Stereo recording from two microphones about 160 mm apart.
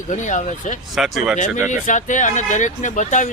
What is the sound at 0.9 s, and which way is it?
Speech, centre (ahead or behind).